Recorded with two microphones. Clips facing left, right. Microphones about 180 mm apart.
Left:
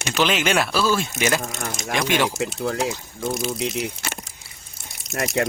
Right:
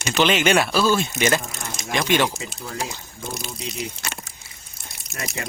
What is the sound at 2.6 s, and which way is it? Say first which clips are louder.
Speech: left 7 dB; 60° left (ahead or behind).